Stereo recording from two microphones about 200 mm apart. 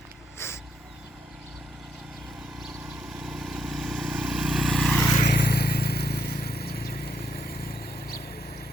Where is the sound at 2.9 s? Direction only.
Centre (ahead or behind).